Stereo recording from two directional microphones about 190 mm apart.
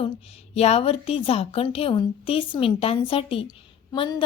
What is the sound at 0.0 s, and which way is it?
A woman's voice, 35° left (ahead or behind).